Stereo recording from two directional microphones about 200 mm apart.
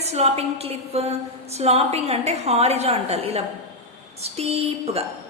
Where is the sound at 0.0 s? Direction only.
30° right (ahead or behind).